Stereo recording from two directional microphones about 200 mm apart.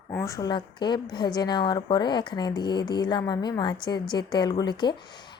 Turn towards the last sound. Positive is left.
turn(degrees=20)  # may be behind; listen again after turning